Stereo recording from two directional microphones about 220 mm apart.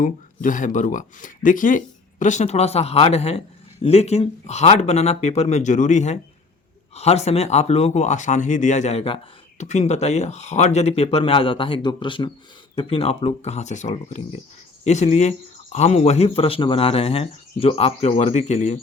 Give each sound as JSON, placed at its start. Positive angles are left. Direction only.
{"t": 0.0, "sound": "speech", "side_deg": 35}